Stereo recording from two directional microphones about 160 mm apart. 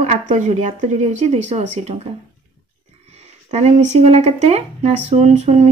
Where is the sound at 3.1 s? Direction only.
40° right (ahead or behind).